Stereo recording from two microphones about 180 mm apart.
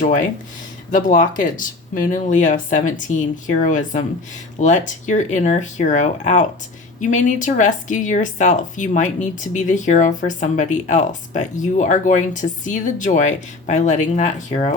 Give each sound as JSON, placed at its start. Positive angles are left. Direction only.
{"t": 0.0, "sound": "speech", "side_deg": 45}